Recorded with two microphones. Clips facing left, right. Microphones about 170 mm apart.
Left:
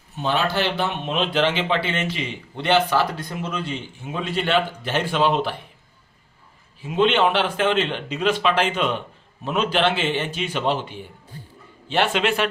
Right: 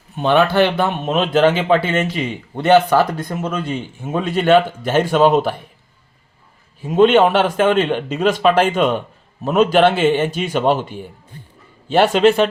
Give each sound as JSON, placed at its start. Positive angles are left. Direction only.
{"t": 0.2, "sound": "speech", "side_deg": -60}
{"t": 6.8, "sound": "a man's voice", "side_deg": -45}